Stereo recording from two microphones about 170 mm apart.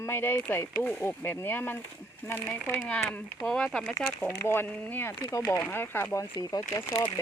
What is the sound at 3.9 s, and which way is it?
Speech, 15° left (ahead or behind).